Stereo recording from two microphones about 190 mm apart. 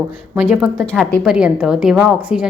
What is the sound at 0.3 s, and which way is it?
A woman's voice, 5° right (ahead or behind).